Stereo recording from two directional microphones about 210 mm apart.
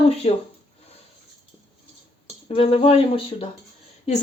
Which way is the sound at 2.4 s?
25° left (ahead or behind).